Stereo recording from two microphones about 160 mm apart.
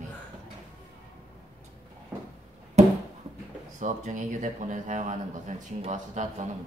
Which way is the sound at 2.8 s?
45° right (ahead or behind).